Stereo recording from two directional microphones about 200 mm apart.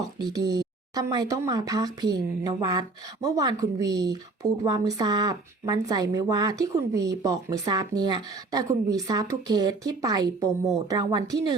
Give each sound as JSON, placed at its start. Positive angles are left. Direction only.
{"t": 0.2, "sound": "a woman's voice", "side_deg": -20}